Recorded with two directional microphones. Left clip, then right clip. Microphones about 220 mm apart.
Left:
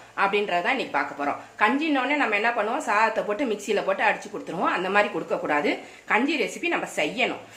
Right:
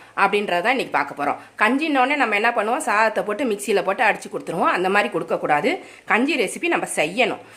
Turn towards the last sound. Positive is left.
turn(degrees=-50)  # may be behind; listen again after turning